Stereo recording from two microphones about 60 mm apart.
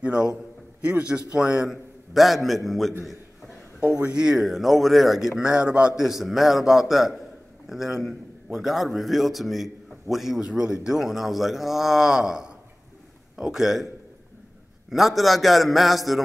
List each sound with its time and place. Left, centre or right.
0.0 s a man's voice: centre
1.7 s a man's voice: centre
4.1 s a man's voice: centre
5.4 s a man's voice: centre
6.0 s a man's voice: centre
14.9 s a man's voice: centre